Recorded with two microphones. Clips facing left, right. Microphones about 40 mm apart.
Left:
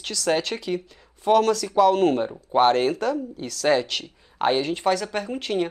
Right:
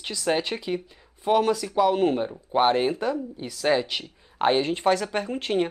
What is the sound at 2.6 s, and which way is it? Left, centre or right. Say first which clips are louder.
A man's voice: left 2 dB; centre.